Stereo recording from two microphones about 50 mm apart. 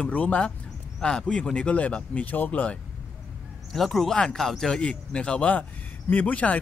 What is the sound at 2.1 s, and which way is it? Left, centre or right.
Speech, left.